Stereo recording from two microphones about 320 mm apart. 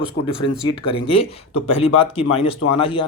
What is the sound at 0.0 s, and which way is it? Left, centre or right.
A man's voice, centre.